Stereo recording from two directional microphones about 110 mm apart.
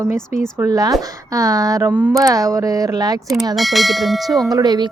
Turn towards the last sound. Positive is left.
turn(degrees=-40)  # may be behind; listen again after turning